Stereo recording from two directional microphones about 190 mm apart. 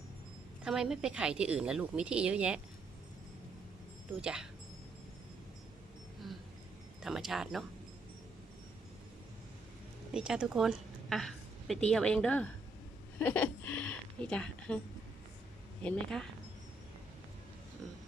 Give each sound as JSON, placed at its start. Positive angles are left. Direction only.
{"t": 0.6, "sound": "a woman's voice", "side_deg": -5}
{"t": 4.2, "sound": "a woman's voice", "side_deg": -5}
{"t": 7.0, "sound": "a woman's voice", "side_deg": 0}
{"t": 10.1, "sound": "a woman's voice", "side_deg": -5}
{"t": 15.8, "sound": "a woman's voice", "side_deg": 5}